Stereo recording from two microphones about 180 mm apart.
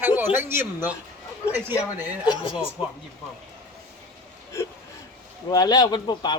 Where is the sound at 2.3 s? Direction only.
30° left (ahead or behind).